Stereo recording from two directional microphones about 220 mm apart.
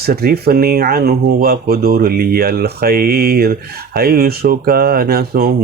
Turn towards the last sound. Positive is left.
turn(degrees=-45)  # may be behind; listen again after turning